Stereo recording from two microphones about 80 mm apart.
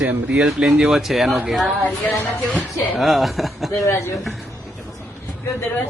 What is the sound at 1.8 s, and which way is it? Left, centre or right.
Speech, centre.